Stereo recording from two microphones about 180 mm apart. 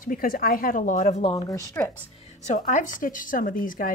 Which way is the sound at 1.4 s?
20° left (ahead or behind).